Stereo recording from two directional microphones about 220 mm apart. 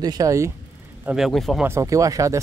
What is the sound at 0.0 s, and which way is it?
Speech, 15° right (ahead or behind).